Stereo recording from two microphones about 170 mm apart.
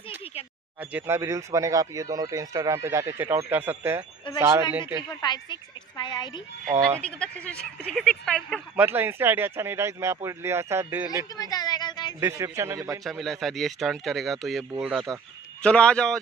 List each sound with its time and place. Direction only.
0.2 s a sound: 35° left (ahead or behind)
0.7 s speech: 10° right (ahead or behind)
5.2 s a woman's voice: 25° left (ahead or behind)
7.0 s speech: 5° left (ahead or behind)
8.8 s speech: 10° right (ahead or behind)
11.3 s a sound: 25° left (ahead or behind)
12.2 s speech: 15° right (ahead or behind)
13.0 s speech: centre (ahead or behind)